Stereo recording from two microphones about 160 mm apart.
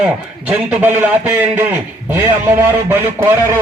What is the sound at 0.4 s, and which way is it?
A man's voice, 10° right (ahead or behind).